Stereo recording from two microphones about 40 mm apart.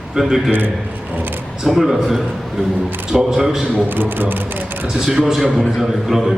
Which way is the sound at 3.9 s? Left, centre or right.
Right.